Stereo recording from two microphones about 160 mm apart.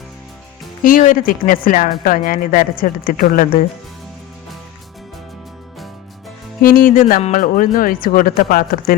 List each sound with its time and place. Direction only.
0.9 s speech: 60° left (ahead or behind)
6.6 s speech: 60° left (ahead or behind)
7.2 s speech: 50° left (ahead or behind); by 9.0 s 65° left (ahead or behind)